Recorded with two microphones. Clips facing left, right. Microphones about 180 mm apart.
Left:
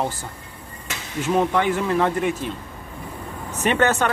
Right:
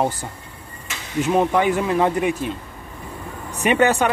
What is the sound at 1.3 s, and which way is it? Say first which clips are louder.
Speech: right 2 dB; 15° right (ahead or behind).